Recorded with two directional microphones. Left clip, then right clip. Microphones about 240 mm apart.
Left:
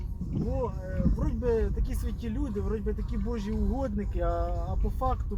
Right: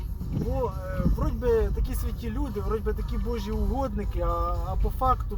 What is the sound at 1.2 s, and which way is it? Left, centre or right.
Speech, centre.